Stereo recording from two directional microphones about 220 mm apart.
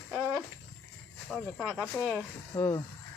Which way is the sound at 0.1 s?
5° right (ahead or behind).